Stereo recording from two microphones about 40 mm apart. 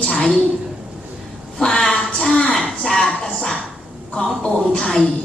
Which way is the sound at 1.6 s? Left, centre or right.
Left.